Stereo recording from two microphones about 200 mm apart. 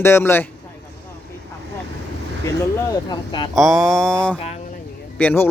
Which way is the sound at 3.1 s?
20° left (ahead or behind).